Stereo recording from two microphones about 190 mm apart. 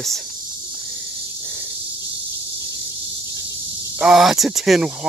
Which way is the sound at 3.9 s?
5° right (ahead or behind).